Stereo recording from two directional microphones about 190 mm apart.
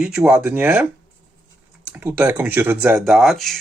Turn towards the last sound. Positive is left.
turn(degrees=0)  # may be behind; listen again after turning